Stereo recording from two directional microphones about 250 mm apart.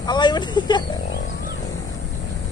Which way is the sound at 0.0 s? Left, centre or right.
Centre.